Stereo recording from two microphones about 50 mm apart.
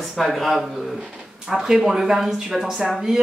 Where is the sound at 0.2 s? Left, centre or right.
Centre.